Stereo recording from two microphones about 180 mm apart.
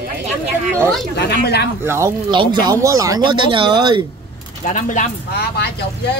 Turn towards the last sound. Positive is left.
turn(degrees=60)  # may be behind; listen again after turning